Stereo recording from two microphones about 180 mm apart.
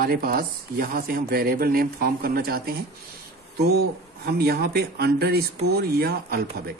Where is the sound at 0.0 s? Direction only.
55° right (ahead or behind).